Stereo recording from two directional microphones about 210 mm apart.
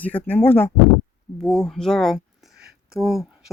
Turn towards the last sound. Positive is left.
turn(degrees=0)  # may be behind; listen again after turning